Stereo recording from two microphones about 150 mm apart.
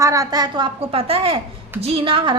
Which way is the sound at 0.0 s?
20° right (ahead or behind).